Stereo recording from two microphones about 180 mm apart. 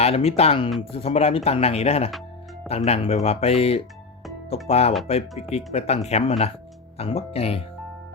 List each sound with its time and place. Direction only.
0.0 s speech: 35° left (ahead or behind)